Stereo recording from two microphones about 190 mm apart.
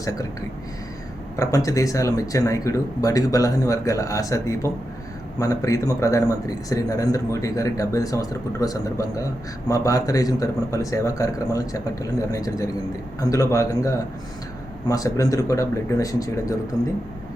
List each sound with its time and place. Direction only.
0.0 s speech: 20° left (ahead or behind)
1.4 s a man's voice: 15° left (ahead or behind)